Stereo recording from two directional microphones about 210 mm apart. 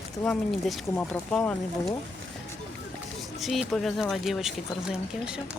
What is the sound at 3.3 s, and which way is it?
Speech, centre (ahead or behind).